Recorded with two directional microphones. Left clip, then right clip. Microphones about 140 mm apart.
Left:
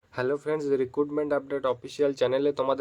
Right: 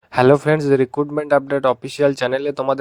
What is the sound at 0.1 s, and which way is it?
Speech, 90° right.